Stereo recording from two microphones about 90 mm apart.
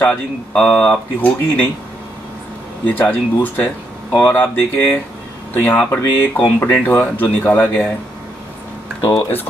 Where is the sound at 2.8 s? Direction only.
20° left (ahead or behind).